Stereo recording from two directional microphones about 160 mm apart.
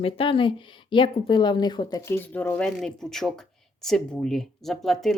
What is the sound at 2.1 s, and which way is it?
Speech, 15° left (ahead or behind).